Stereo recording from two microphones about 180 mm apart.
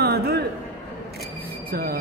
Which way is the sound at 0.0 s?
60° right (ahead or behind).